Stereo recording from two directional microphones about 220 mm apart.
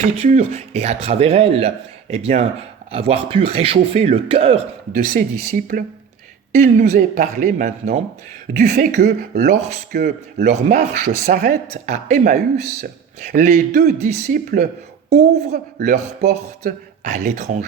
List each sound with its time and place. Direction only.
0.2 s speech: 30° right (ahead or behind)
5.1 s speech: 40° right (ahead or behind)
15.8 s speech: 40° right (ahead or behind)